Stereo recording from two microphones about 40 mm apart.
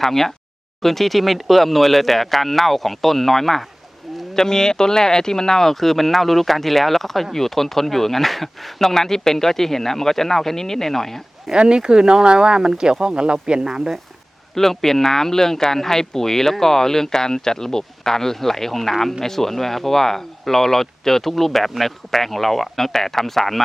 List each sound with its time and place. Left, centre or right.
0.0 s speech: centre
11.5 s speech: right
14.5 s speech: centre